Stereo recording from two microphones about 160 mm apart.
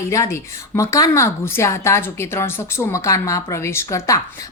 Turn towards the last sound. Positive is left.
turn(degrees=15)  # may be behind; listen again after turning